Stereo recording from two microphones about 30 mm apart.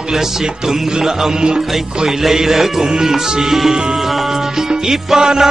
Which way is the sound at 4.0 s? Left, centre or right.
Centre.